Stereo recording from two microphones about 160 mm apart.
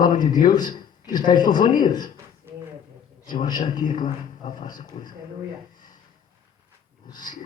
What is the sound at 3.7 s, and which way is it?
Speech, 55° left (ahead or behind).